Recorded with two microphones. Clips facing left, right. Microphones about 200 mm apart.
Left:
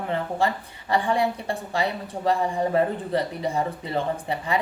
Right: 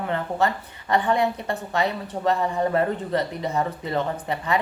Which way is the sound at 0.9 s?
35° left (ahead or behind).